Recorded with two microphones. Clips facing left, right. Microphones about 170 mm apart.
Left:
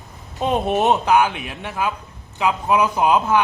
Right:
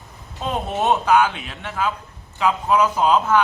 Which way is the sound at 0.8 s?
15° left (ahead or behind).